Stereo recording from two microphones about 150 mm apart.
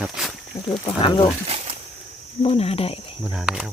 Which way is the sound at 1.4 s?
40° right (ahead or behind).